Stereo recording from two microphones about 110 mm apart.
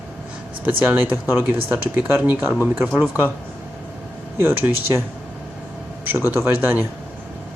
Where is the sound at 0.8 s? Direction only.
15° right (ahead or behind).